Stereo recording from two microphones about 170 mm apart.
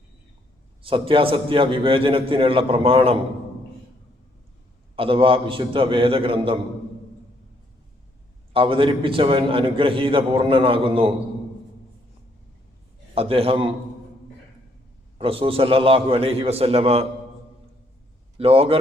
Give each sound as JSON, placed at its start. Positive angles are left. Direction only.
{"t": 0.8, "sound": "a man's voice", "side_deg": -30}
{"t": 4.9, "sound": "a man's voice", "side_deg": -30}
{"t": 8.5, "sound": "a man's voice", "side_deg": -30}
{"t": 13.1, "sound": "a man's voice", "side_deg": -35}
{"t": 15.2, "sound": "a man's voice", "side_deg": -35}
{"t": 18.3, "sound": "a man's voice", "side_deg": -35}